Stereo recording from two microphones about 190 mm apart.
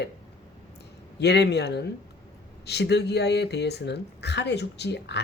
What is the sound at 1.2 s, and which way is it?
Speech, 60° left (ahead or behind).